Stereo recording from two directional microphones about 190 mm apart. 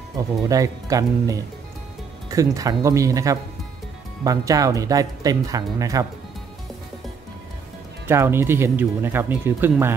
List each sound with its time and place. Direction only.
0.4 s speech: 15° right (ahead or behind)
8.1 s speech: 15° right (ahead or behind)